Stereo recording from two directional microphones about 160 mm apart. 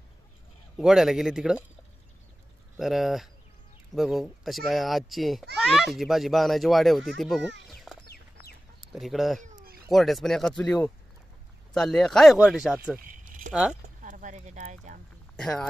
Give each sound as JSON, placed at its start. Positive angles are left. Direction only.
{"t": 0.7, "sound": "speech", "side_deg": 0}
{"t": 2.8, "sound": "speech", "side_deg": 0}
{"t": 7.6, "sound": "a sound", "side_deg": 0}
{"t": 8.1, "sound": "chicken", "side_deg": 75}
{"t": 8.8, "sound": "speech", "side_deg": 0}
{"t": 9.4, "sound": "a sound", "side_deg": -55}
{"t": 9.8, "sound": "speech", "side_deg": 0}
{"t": 13.0, "sound": "keys jangling", "side_deg": -55}
{"t": 13.5, "sound": "speech", "side_deg": -5}
{"t": 14.0, "sound": "speech", "side_deg": -55}
{"t": 15.3, "sound": "speech", "side_deg": 5}